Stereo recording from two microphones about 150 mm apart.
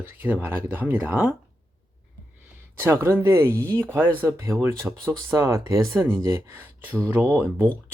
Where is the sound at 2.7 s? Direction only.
15° right (ahead or behind).